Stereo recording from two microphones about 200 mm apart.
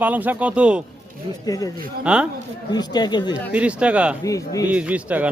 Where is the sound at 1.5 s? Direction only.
15° left (ahead or behind).